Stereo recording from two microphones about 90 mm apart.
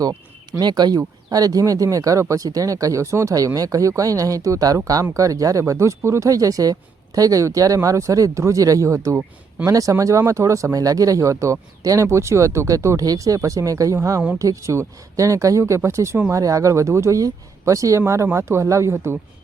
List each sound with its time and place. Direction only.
0.6 s speech: 50° right (ahead or behind); by 19.1 s 30° right (ahead or behind)